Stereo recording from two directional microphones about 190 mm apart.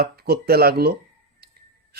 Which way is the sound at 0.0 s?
55° right (ahead or behind).